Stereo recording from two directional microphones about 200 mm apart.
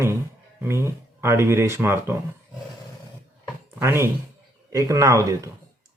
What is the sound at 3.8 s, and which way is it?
Speech, 10° right (ahead or behind).